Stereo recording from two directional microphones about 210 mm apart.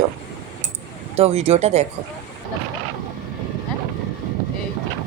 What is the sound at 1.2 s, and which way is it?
Speech, 30° right (ahead or behind).